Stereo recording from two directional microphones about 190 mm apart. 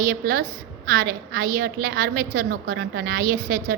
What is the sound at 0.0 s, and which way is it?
A woman's voice, 45° right (ahead or behind).